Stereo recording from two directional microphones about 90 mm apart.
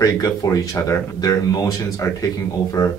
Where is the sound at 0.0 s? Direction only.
45° left (ahead or behind).